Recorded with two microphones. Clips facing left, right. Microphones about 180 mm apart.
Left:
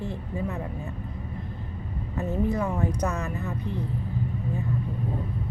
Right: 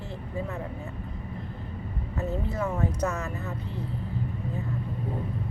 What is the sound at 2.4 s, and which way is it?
Speech, 15° left (ahead or behind).